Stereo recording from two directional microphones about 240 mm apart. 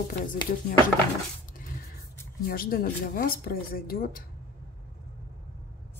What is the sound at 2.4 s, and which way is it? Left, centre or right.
Speech, left.